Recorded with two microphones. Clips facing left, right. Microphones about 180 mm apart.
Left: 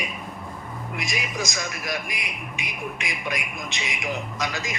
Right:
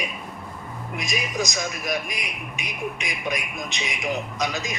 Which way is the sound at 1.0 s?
20° right (ahead or behind).